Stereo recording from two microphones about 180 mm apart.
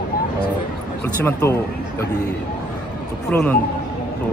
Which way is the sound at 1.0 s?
10° left (ahead or behind).